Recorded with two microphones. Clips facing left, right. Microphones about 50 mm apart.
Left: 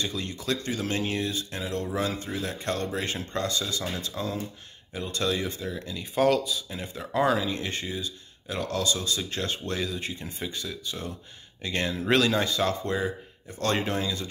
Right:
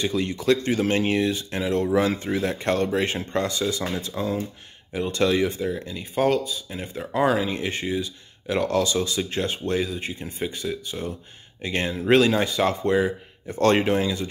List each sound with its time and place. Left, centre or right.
0.0 s speech: right
3.2 s speech: right
4.1 s speech: centre
4.9 s speech: right
6.1 s speech: centre
7.1 s speech: right
10.4 s speech: right
10.9 s speech: centre
12.9 s speech: right